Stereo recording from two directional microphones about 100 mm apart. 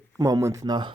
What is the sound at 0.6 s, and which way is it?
Speech, 45° right (ahead or behind).